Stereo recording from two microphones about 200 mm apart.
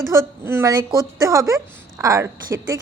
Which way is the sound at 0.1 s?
15° right (ahead or behind).